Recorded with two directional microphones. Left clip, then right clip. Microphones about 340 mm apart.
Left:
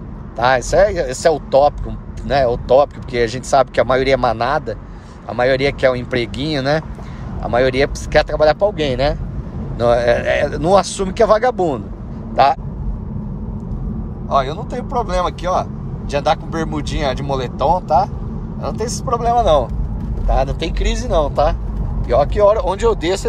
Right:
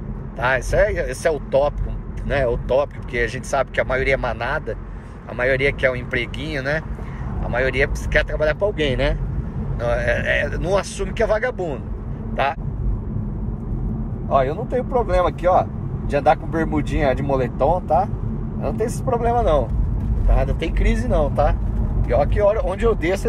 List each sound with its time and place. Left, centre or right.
0.4 s speech: centre
14.5 s speech: centre
17.3 s speech: centre